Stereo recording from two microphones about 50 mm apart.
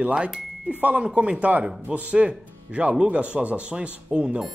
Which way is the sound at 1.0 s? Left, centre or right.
Right.